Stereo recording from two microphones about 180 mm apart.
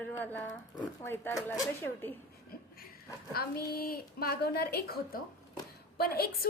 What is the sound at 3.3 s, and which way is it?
A woman's voice, 55° left (ahead or behind).